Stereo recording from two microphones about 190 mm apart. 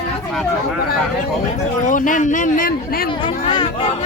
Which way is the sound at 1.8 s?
45° left (ahead or behind).